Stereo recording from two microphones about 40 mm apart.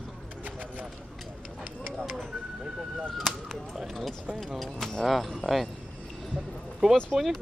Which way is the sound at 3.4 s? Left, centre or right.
Centre.